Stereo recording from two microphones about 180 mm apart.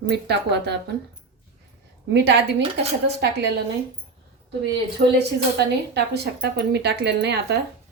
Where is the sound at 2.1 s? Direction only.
70° right (ahead or behind).